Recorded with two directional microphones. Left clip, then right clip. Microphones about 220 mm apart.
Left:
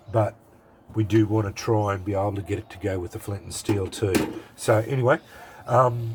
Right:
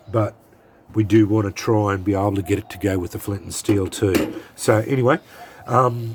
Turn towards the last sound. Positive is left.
turn(degrees=-40)  # may be behind; listen again after turning